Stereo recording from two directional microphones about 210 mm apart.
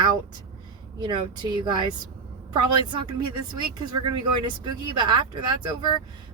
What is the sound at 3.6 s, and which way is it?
Speech, 20° right (ahead or behind).